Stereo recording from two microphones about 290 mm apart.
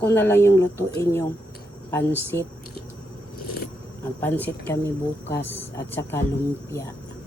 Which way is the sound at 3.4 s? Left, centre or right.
Left.